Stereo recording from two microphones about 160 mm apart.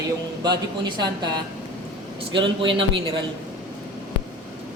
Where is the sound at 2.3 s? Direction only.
30° right (ahead or behind).